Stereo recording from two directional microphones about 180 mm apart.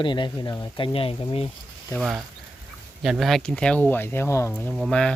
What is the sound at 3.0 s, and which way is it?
Speech, centre (ahead or behind).